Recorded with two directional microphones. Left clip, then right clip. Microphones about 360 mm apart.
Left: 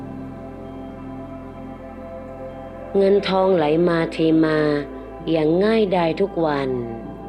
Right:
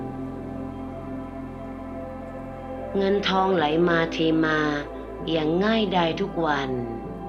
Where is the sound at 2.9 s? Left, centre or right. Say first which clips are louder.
Left 6 dB; left.